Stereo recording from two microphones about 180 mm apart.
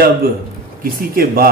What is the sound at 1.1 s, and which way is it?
Speech, 55° right (ahead or behind).